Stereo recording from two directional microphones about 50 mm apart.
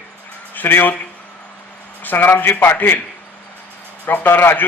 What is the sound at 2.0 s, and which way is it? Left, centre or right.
Speech, left.